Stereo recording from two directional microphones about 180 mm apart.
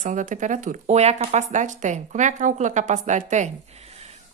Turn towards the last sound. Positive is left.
turn(degrees=-40)  # may be behind; listen again after turning